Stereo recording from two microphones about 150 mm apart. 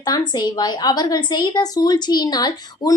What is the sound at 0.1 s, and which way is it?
A woman's voice, 30° left (ahead or behind).